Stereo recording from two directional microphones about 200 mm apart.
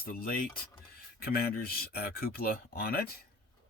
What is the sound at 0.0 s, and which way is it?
Speech, 45° left (ahead or behind).